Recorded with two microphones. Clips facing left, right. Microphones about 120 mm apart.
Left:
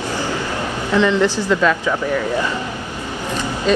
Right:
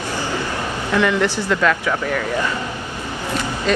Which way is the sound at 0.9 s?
20° left (ahead or behind).